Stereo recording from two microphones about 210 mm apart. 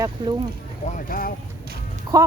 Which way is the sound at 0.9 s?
40° left (ahead or behind).